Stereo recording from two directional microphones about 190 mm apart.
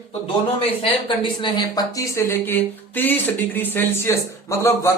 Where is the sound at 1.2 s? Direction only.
25° left (ahead or behind).